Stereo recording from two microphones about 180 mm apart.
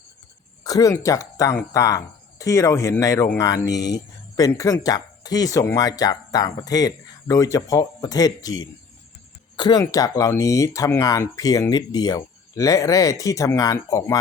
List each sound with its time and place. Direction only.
0.6 s speech: 20° left (ahead or behind)